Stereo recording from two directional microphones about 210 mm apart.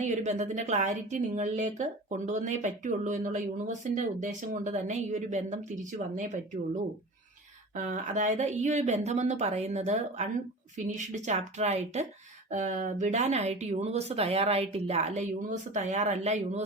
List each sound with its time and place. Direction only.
0.0 s a woman's voice: 35° right (ahead or behind)
7.8 s a woman's voice: 35° right (ahead or behind)